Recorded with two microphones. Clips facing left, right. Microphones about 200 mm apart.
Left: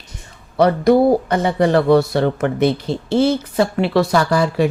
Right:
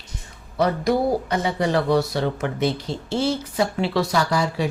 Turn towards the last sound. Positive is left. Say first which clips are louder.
# left 6 dB
turn(degrees=60)  # may be behind; listen again after turning